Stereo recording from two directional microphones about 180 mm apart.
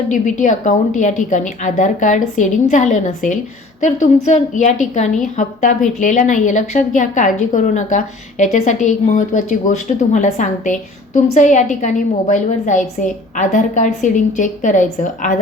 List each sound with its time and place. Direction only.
0.1 s a woman's voice: 45° left (ahead or behind)